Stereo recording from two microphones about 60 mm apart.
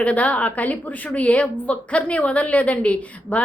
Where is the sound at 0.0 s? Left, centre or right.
Left.